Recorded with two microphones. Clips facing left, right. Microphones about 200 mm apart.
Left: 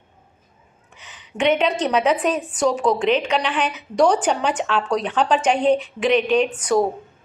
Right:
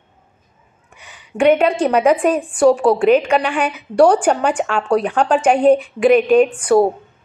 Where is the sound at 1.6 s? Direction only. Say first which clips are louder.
Right 5 dB; 10° right (ahead or behind).